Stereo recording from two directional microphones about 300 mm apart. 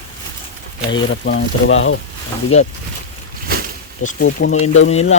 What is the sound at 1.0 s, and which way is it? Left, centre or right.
Speech, left.